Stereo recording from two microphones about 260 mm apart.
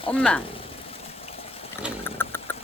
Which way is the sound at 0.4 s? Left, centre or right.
Left.